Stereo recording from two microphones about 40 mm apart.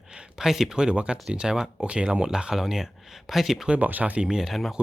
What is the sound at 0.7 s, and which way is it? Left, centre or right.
Speech, right.